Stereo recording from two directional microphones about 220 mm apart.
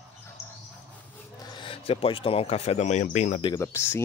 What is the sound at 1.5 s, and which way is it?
Speech, 25° left (ahead or behind).